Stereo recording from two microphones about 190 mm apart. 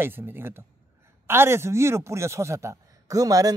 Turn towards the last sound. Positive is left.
turn(degrees=-20)  # may be behind; listen again after turning